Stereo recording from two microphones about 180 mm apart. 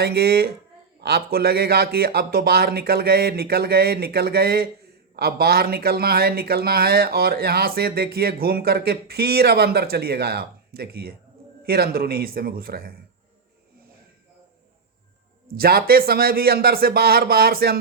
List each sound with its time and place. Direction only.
0.0 s speech: 60° right (ahead or behind)
15.5 s speech: 60° right (ahead or behind)